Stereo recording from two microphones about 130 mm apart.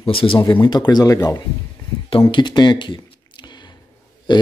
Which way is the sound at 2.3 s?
35° left (ahead or behind).